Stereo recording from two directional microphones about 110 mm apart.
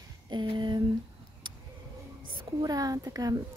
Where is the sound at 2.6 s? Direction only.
35° right (ahead or behind).